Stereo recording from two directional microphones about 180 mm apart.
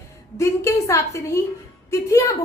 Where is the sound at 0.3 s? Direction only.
15° left (ahead or behind).